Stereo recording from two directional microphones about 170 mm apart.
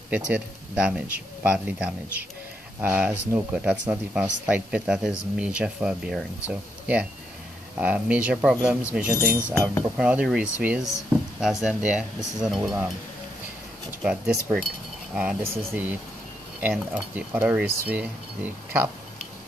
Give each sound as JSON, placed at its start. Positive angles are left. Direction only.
{"t": 0.8, "sound": "speech", "side_deg": -10}
{"t": 9.4, "sound": "speech", "side_deg": 15}
{"t": 9.8, "sound": "speech", "side_deg": -5}
{"t": 14.0, "sound": "speech", "side_deg": -5}